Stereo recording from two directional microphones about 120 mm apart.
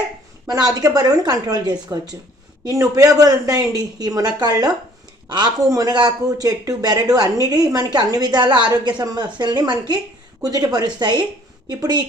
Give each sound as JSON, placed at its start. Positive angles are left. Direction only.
{"t": 0.5, "sound": "a woman's voice", "side_deg": -30}